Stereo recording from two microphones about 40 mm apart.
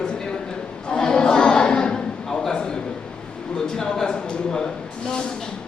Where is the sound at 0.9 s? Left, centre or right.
Centre.